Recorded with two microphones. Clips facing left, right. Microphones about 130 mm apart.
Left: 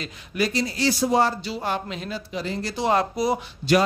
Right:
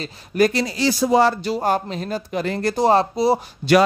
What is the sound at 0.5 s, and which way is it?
Speech, 65° right (ahead or behind).